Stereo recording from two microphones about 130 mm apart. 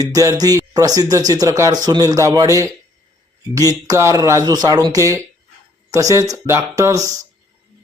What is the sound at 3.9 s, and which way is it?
Speech, 25° right (ahead or behind).